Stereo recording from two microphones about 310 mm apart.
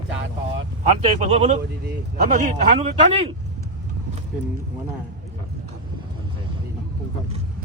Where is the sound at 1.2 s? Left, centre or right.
Right.